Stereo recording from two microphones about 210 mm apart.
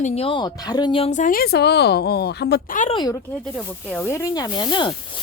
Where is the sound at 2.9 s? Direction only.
20° left (ahead or behind).